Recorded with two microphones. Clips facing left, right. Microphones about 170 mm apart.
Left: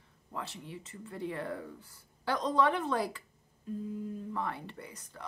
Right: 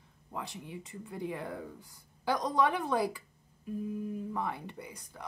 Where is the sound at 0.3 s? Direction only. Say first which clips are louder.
Right 1 dB; 15° right (ahead or behind).